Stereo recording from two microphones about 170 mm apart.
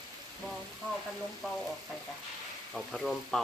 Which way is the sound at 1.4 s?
Centre (ahead or behind).